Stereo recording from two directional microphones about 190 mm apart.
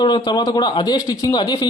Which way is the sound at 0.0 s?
20° left (ahead or behind).